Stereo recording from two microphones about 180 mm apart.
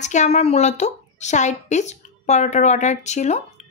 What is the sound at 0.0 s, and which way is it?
Speech, 40° left (ahead or behind).